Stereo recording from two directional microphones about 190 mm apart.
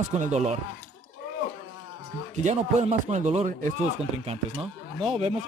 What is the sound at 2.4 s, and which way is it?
Speech, 35° right (ahead or behind).